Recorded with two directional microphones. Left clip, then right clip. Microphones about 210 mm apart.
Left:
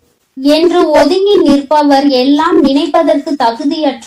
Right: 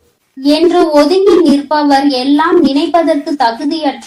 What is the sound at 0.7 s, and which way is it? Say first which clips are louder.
Speech: even; 25° left (ahead or behind).